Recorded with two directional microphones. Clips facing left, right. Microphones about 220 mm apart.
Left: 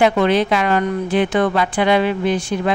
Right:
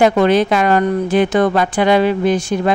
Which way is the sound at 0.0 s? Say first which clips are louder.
Right 3 dB; 45° right (ahead or behind).